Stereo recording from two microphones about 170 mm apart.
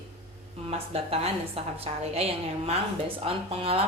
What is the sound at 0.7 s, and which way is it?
A woman's voice, 35° right (ahead or behind).